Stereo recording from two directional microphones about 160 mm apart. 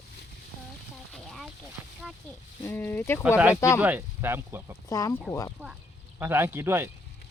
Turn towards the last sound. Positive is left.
turn(degrees=-15)  # may be behind; listen again after turning